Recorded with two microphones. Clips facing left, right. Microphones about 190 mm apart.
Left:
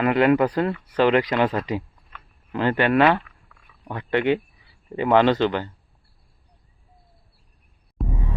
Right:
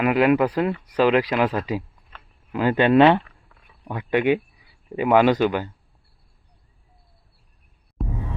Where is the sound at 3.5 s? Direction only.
30° right (ahead or behind).